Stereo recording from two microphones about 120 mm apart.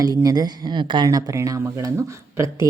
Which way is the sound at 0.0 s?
30° right (ahead or behind).